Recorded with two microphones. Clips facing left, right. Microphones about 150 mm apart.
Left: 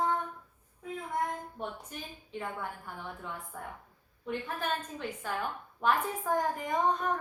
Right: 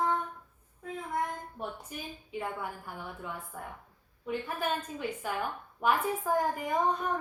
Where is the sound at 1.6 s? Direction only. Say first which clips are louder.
Even; 10° right (ahead or behind).